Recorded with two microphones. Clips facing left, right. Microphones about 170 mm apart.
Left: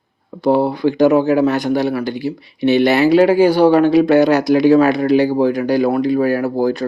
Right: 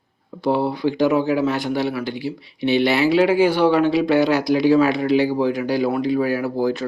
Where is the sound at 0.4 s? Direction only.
45° left (ahead or behind).